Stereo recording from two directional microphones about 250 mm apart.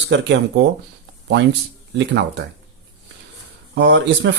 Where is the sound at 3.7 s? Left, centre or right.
Right.